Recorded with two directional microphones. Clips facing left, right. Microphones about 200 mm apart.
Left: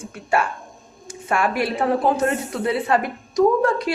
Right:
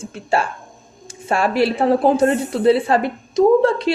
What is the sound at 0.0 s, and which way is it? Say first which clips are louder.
A woman's voice: right 2 dB; 25° right (ahead or behind).